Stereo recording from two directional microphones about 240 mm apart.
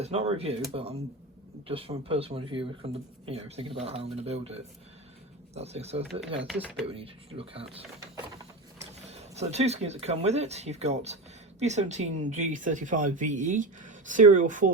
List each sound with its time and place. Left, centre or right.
0.0 s speech: right
6.0 s speech: right
6.5 s speech: centre
6.8 s speech: right
9.0 s speech: right